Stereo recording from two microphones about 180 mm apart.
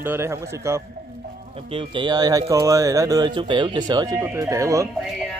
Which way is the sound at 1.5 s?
30° right (ahead or behind).